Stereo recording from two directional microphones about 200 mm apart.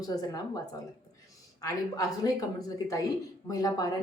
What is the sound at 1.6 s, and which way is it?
Speech, 20° left (ahead or behind).